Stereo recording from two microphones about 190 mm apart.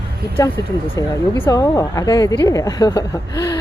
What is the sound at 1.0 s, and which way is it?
A woman's voice, 20° left (ahead or behind).